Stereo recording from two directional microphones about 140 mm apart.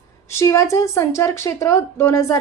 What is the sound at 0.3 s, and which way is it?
Speech, 20° left (ahead or behind).